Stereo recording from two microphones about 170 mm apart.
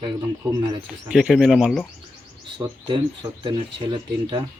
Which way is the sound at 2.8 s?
30° right (ahead or behind).